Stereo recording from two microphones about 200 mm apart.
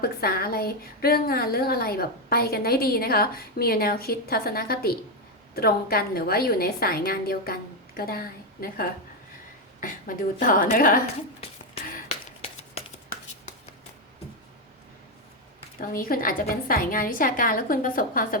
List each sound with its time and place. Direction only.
0.0 s a woman's voice: 50° left (ahead or behind)
15.8 s a woman's voice: 45° left (ahead or behind)